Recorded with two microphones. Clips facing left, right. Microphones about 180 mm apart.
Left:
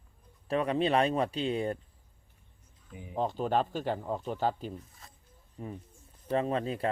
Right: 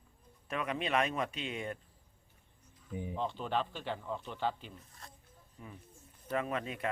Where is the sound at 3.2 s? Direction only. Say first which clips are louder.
Left 7 dB; 40° left (ahead or behind).